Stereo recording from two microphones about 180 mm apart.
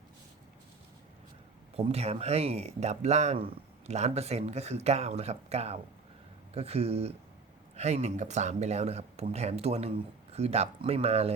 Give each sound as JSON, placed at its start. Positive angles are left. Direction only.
{"t": 1.7, "sound": "speech", "side_deg": -35}